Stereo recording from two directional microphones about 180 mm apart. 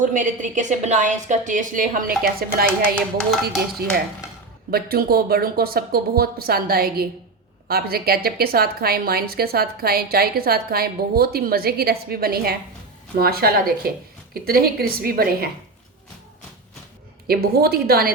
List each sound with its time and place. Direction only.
0.0 s a woman's voice: 45° right (ahead or behind)
2.8 s a sound: 5° left (ahead or behind)
4.7 s a woman's voice: 55° right (ahead or behind)
17.2 s a woman's voice: 60° right (ahead or behind)